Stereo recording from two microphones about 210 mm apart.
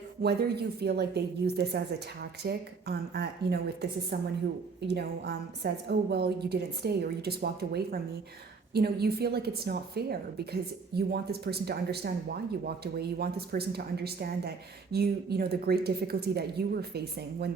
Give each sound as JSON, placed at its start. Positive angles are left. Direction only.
{"t": 0.2, "sound": "a woman's voice", "side_deg": -50}